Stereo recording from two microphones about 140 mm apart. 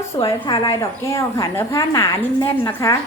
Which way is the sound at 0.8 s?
20° left (ahead or behind).